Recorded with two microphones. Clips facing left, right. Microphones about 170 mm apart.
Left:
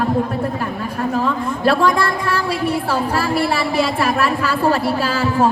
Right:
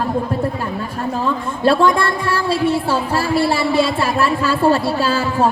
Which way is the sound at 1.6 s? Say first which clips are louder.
Right 2 dB; 25° right (ahead or behind).